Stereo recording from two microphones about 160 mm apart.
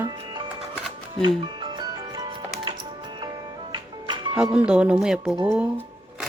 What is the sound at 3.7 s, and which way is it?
Music, 30° right (ahead or behind).